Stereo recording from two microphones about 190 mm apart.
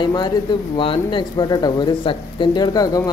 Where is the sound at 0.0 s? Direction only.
25° left (ahead or behind).